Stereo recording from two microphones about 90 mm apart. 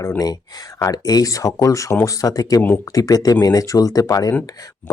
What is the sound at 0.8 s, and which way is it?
Speech, 45° left (ahead or behind).